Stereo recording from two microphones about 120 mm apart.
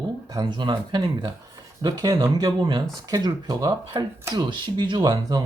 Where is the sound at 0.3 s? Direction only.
40° right (ahead or behind).